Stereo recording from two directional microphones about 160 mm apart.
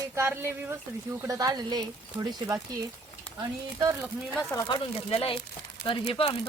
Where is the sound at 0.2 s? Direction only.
15° right (ahead or behind).